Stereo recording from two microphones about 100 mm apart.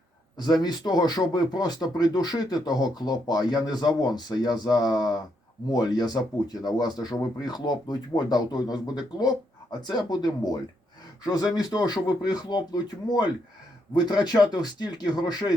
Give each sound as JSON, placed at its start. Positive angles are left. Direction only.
{"t": 0.3, "sound": "speech", "side_deg": 45}